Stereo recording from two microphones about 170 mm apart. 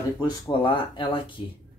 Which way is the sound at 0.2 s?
30° left (ahead or behind).